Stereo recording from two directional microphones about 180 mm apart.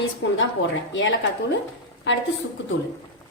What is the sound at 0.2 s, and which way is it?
A woman's voice, 80° left.